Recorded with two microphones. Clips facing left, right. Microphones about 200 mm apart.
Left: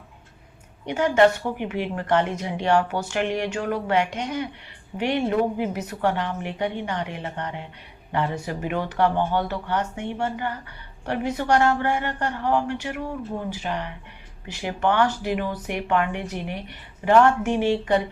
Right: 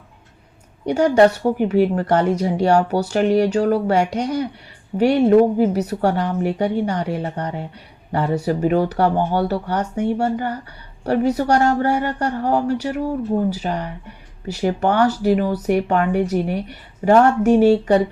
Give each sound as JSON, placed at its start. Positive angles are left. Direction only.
{"t": 0.9, "sound": "speech", "side_deg": -40}